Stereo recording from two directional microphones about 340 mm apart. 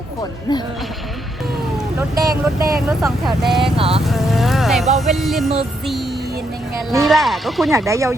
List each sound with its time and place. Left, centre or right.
2.0 s speech: centre
2.3 s speech: right
3.0 s speech: centre
3.8 s speech: centre
4.0 s insect: centre
5.1 s speech: centre
6.9 s speech: centre